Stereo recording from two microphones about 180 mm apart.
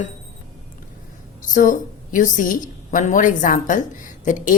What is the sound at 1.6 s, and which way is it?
A woman's voice, 45° left (ahead or behind).